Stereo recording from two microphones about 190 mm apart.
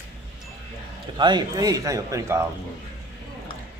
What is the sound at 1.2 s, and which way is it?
Speech, 20° right (ahead or behind).